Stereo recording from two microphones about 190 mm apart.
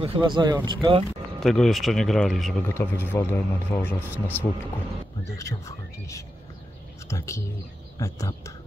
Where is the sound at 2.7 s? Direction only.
10° left (ahead or behind).